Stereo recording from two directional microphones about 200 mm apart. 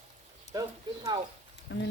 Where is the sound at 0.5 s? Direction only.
20° right (ahead or behind).